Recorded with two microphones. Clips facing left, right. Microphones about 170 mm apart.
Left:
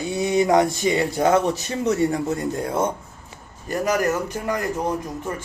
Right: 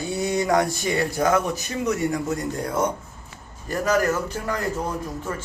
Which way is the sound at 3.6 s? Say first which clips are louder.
Even; 15° left (ahead or behind).